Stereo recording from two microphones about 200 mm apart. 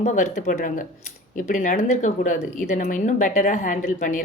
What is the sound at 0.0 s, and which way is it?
A woman's voice, 35° left (ahead or behind).